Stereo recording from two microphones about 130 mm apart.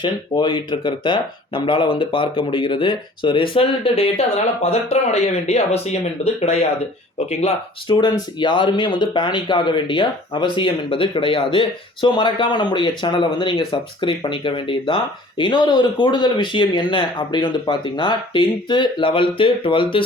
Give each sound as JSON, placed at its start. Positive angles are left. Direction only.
{"t": 0.0, "sound": "speech", "side_deg": 40}
{"t": 7.9, "sound": "speech", "side_deg": 35}